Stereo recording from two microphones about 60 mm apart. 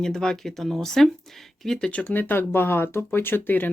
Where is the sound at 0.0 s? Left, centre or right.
Centre.